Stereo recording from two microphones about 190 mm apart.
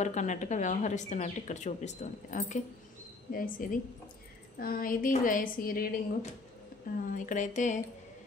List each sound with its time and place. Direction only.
0.0 s a woman's voice: 40° left (ahead or behind)
7.1 s speech: 45° left (ahead or behind)